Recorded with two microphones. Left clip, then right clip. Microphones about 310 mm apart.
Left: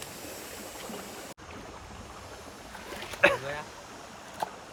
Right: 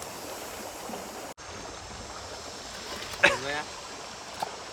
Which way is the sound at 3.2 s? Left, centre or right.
Centre.